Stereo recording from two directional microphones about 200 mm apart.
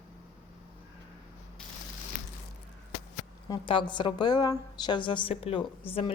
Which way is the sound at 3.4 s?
25° left (ahead or behind).